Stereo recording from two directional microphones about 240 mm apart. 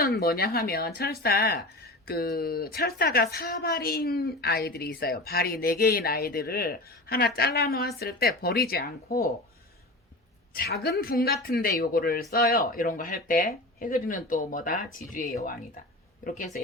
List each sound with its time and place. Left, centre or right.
0.0 s speech: left
10.5 s speech: left